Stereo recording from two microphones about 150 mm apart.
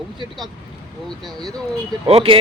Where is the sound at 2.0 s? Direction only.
40° right (ahead or behind).